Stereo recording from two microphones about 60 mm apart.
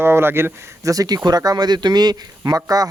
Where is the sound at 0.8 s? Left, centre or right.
Right.